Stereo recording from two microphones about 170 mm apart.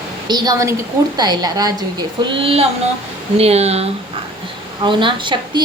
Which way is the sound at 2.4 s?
35° right (ahead or behind).